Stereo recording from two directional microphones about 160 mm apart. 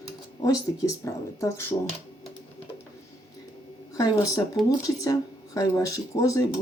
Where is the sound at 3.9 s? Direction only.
20° left (ahead or behind).